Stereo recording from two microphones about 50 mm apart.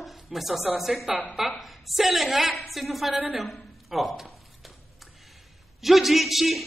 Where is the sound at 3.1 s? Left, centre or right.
Right.